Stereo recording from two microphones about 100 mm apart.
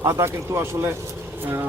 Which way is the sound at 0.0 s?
30° right (ahead or behind).